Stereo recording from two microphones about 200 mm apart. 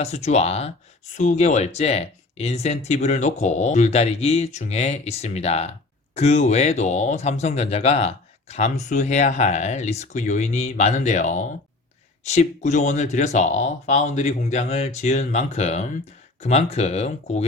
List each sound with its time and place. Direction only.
0.0 s speech: 35° left (ahead or behind)